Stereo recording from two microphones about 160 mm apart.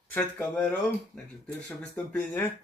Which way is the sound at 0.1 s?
5° left (ahead or behind).